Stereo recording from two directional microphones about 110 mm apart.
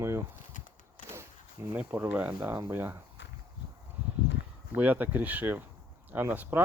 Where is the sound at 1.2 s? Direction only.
25° right (ahead or behind).